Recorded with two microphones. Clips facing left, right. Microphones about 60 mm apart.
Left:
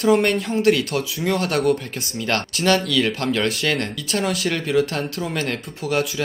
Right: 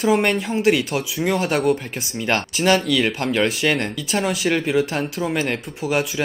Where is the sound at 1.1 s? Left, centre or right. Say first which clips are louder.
Right 2 dB; centre.